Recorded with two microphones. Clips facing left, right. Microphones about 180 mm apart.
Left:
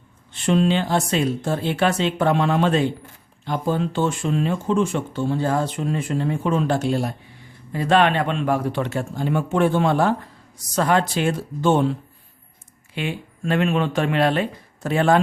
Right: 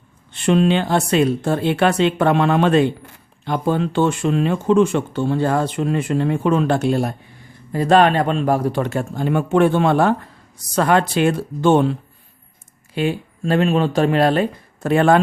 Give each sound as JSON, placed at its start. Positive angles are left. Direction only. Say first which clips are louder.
{"t": 0.3, "sound": "speech", "louder": "right 3 dB", "side_deg": -65}
{"t": 7.7, "sound": "speech", "louder": "right 4 dB", "side_deg": -40}
{"t": 12.9, "sound": "speech", "louder": "right 7 dB", "side_deg": -40}
{"t": 14.8, "sound": "speech", "louder": "right 4 dB", "side_deg": -55}